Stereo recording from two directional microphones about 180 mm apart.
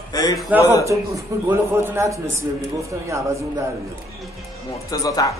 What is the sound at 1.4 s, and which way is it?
A man's voice, 15° right (ahead or behind).